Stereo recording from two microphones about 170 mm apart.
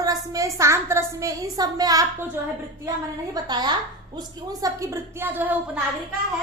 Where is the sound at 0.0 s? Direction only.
20° right (ahead or behind).